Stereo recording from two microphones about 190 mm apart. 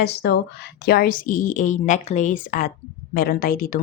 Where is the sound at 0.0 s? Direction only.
60° left (ahead or behind).